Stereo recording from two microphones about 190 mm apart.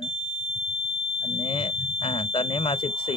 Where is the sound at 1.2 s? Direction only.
25° left (ahead or behind).